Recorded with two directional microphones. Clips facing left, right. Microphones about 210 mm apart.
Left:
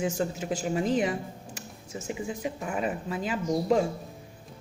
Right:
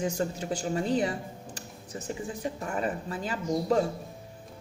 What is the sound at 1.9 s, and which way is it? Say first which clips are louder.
Speech: left 2 dB; 10° left (ahead or behind).